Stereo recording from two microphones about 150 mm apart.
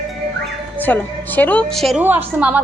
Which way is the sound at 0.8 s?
10° left (ahead or behind).